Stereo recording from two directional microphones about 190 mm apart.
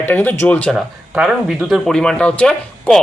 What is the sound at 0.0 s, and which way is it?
Speech, 10° left (ahead or behind).